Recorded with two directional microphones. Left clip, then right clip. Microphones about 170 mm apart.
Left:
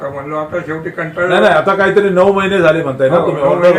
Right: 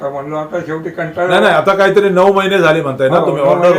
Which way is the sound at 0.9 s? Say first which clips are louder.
Even; 5° left (ahead or behind).